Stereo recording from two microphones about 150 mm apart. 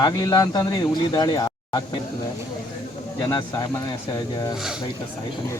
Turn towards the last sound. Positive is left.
turn(degrees=-5)  # may be behind; listen again after turning